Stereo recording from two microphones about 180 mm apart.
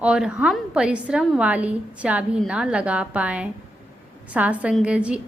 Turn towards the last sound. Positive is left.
turn(degrees=-5)  # may be behind; listen again after turning